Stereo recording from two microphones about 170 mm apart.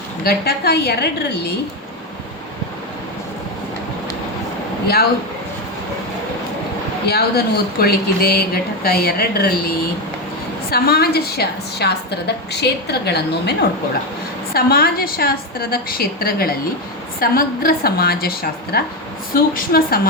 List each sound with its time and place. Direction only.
0.3 s a woman's voice: 65° left (ahead or behind)
7.1 s a woman's voice: 70° left (ahead or behind)
14.5 s speech: 65° left (ahead or behind)